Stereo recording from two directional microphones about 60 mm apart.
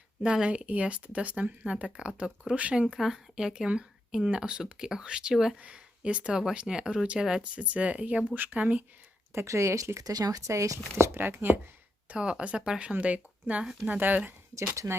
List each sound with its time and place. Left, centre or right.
0.2 s speech: centre
5.6 s speech: centre
9.3 s speech: right
10.0 s speech: right
10.9 s speech: right
12.0 s speech: centre
14.5 s speech: right